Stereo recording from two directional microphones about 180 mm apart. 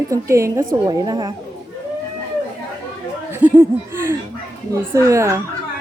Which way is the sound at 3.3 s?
10° right (ahead or behind).